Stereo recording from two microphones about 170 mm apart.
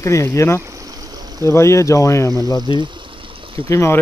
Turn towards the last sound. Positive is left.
turn(degrees=15)  # may be behind; listen again after turning